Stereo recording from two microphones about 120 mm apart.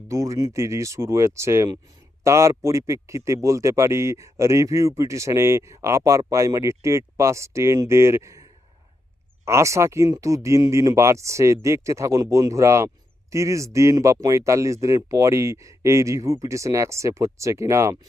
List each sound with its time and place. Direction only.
0.1 s speech: 25° right (ahead or behind)